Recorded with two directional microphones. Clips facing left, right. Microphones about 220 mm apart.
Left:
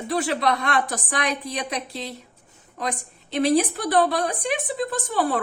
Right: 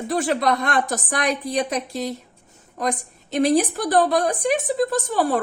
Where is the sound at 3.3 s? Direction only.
45° right (ahead or behind).